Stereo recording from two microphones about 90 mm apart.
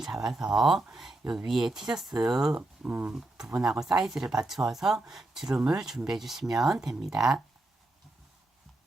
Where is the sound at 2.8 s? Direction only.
20° right (ahead or behind).